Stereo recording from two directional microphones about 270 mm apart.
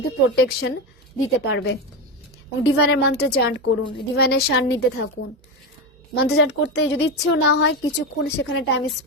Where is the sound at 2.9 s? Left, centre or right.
Left.